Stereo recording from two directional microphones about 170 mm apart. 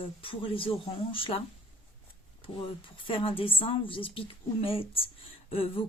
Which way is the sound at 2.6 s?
30° left (ahead or behind).